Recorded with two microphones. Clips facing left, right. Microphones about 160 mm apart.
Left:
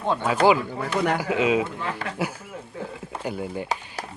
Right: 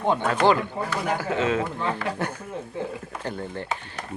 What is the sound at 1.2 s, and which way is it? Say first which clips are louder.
Speech: left 2 dB; 15° left (ahead or behind).